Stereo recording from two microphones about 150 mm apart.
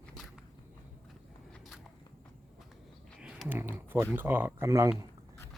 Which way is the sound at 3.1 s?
5° right (ahead or behind).